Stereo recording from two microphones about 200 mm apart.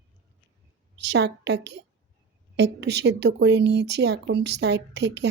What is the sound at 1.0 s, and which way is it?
A woman's voice, 60° right (ahead or behind).